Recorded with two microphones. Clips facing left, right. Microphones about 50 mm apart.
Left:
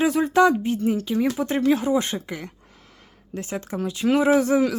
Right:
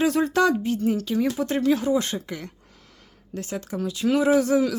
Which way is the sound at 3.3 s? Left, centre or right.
Left.